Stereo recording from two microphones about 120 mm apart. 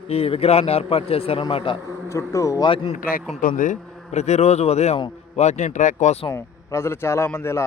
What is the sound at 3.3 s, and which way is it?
Speech, 90° left.